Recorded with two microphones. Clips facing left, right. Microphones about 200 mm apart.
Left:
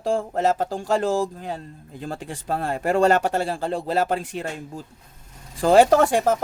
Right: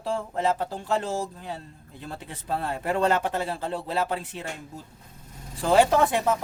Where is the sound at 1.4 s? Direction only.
45° left (ahead or behind).